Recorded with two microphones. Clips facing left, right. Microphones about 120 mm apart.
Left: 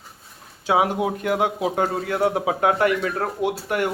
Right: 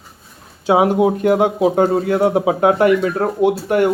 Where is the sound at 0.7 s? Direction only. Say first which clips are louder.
Right 7 dB; 25° right (ahead or behind).